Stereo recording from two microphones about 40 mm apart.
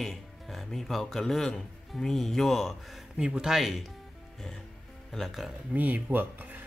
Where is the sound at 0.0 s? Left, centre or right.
Centre.